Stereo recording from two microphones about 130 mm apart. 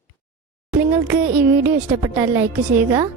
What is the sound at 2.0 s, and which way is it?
Speech, 20° right (ahead or behind).